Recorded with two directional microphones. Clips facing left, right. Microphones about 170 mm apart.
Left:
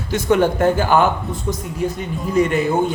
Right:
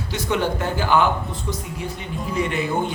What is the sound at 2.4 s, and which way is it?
Speech, 45° left (ahead or behind).